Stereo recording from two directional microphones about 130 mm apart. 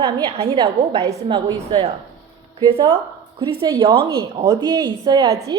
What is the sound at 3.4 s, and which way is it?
Speech, 45° right (ahead or behind).